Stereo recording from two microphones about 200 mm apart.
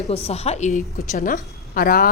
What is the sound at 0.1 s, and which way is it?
A woman's voice, 30° left (ahead or behind).